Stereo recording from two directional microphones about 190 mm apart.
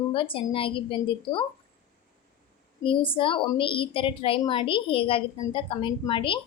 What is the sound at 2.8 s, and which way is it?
A woman's voice, 25° left (ahead or behind).